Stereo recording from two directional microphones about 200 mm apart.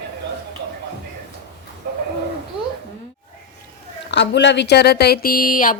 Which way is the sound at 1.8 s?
55° right (ahead or behind).